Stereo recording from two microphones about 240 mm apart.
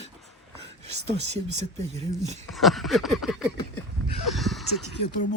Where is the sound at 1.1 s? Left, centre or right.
Right.